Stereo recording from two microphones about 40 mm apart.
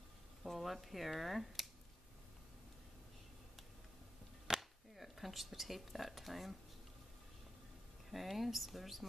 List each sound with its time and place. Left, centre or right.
0.4 s speech: centre
4.6 s speech: centre
8.1 s speech: centre